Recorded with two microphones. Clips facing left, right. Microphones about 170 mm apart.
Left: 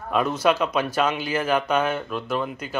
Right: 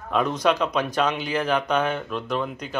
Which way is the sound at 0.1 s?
5° left (ahead or behind).